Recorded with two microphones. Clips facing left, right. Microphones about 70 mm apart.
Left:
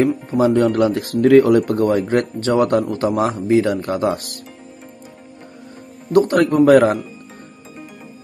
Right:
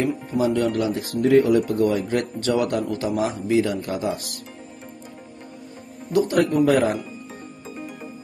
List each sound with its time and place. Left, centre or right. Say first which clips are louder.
0.0 s speech: left 6 dB; left
0.6 s speech: left 6 dB; left
1.7 s speech: left 4 dB; left
6.1 s speech: left 5 dB; left